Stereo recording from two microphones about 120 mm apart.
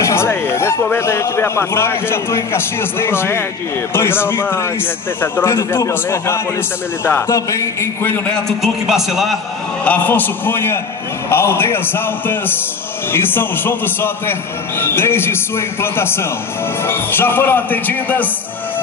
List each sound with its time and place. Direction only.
0.0 s a sound: 20° left (ahead or behind)
0.9 s a man's voice: 20° left (ahead or behind)
8.6 s a man's voice: 5° right (ahead or behind)
9.8 s a man's voice: 15° left (ahead or behind)